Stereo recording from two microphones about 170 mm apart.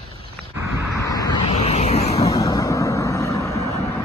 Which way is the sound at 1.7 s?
40° left (ahead or behind).